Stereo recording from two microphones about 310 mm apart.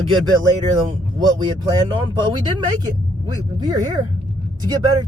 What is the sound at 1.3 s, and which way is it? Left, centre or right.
Speech, centre.